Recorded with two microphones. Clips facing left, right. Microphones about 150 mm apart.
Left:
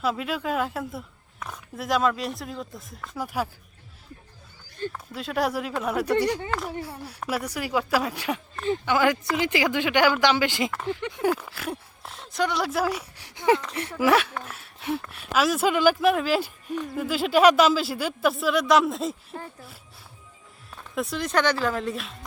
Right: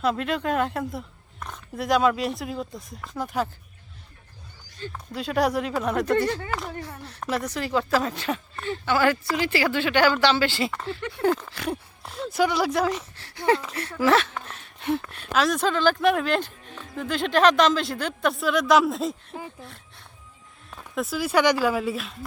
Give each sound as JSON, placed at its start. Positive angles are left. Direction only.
{"t": 0.0, "sound": "speech", "side_deg": 5}
{"t": 4.9, "sound": "speech", "side_deg": 0}
{"t": 6.5, "sound": "a woman's voice", "side_deg": 0}
{"t": 11.3, "sound": "a woman's voice", "side_deg": 5}
{"t": 20.9, "sound": "speech", "side_deg": 0}